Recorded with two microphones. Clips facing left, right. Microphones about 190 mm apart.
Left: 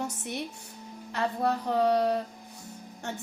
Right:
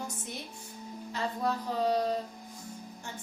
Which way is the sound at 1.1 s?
65° left (ahead or behind).